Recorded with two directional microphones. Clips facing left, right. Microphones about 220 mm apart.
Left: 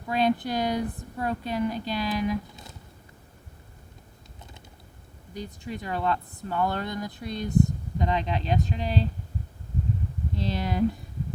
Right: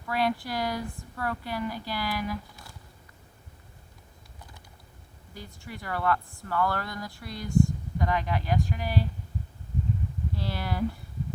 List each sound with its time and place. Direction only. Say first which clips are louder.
0.1 s speech: left 4 dB; 20° left (ahead or behind)
5.3 s speech: left 7 dB; 20° left (ahead or behind)
10.3 s speech: left 5 dB; 20° left (ahead or behind)